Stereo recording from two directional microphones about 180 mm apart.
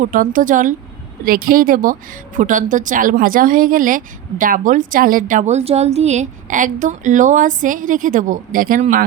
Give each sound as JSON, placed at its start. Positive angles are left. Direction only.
{"t": 0.0, "sound": "a woman's voice", "side_deg": -45}